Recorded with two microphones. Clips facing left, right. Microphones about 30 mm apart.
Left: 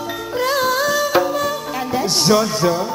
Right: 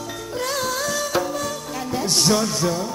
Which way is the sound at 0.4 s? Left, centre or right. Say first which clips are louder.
Left 7 dB; left.